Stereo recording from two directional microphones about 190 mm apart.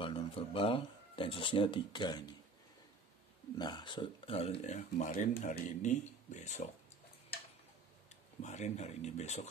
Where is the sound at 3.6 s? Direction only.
20° left (ahead or behind); by 5.5 s 40° left (ahead or behind).